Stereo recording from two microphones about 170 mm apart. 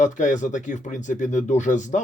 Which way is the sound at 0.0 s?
45° left (ahead or behind).